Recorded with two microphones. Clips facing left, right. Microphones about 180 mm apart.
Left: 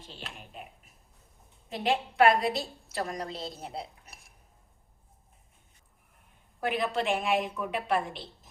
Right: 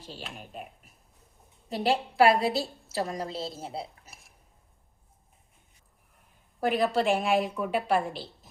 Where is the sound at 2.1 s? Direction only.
30° right (ahead or behind).